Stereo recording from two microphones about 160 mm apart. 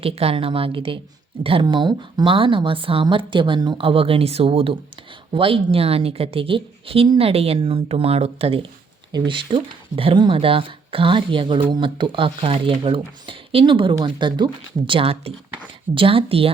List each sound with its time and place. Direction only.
0.0 s speech: 40° right (ahead or behind)